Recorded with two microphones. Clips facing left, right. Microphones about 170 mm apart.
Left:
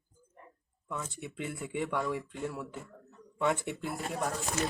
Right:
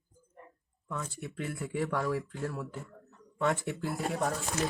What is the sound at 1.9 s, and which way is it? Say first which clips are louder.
Speech: right 1 dB; centre (ahead or behind).